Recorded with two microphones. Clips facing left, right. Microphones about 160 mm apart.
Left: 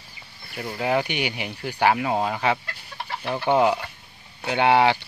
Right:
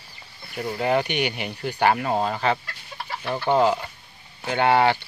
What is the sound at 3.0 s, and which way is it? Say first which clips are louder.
Chicken: even; 25° left (ahead or behind).